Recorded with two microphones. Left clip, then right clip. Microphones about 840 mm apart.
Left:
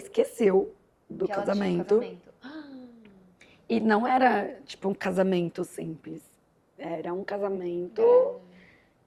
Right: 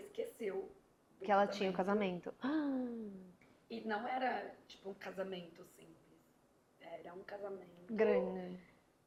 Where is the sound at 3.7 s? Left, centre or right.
Left.